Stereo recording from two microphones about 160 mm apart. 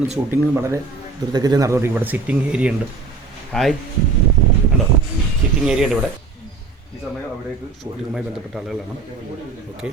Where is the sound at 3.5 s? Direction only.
5° left (ahead or behind).